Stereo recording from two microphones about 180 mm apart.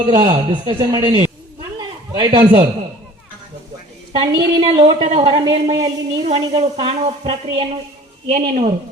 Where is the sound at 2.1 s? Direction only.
20° right (ahead or behind).